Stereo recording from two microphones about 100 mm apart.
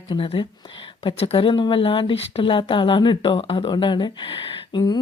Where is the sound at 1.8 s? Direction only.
65° left (ahead or behind).